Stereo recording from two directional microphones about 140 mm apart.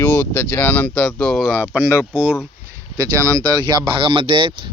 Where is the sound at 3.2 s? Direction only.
25° right (ahead or behind).